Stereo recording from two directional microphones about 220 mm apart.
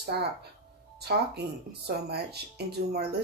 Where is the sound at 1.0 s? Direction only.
50° right (ahead or behind).